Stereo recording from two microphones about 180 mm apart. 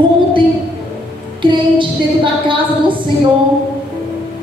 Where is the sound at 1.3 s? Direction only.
25° right (ahead or behind).